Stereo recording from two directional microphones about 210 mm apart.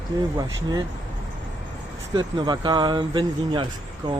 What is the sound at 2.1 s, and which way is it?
Speech, 20° right (ahead or behind).